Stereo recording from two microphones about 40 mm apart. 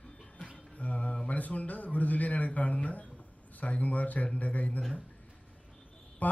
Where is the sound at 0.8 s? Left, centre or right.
Left.